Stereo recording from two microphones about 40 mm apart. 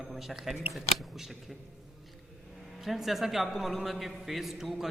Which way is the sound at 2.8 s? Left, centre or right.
Centre.